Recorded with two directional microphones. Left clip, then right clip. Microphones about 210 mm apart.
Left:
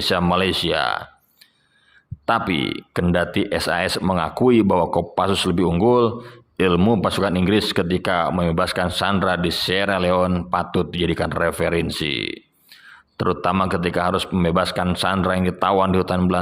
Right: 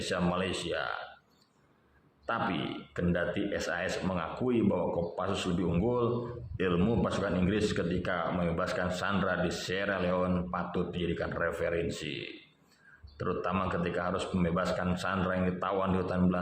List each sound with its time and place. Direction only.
0.0 s speech: 40° left (ahead or behind)
2.2 s speech: 40° left (ahead or behind)